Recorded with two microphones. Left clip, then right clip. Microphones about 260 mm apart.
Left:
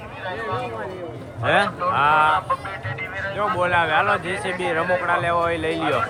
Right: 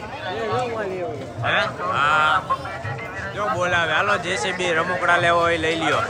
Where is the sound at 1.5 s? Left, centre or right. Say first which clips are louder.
Left 2 dB; centre.